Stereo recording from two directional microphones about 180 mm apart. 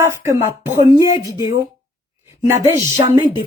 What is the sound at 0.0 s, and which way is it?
Speech, 15° right (ahead or behind).